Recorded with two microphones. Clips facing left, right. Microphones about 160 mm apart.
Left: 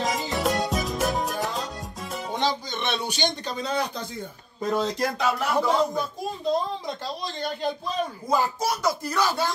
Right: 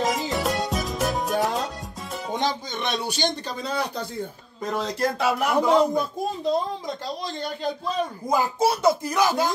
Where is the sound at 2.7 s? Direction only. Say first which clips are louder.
Right 1 dB; 40° right (ahead or behind).